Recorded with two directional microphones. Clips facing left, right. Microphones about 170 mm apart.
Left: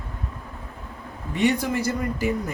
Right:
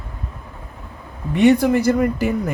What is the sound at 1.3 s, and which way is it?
Speech, 60° right (ahead or behind).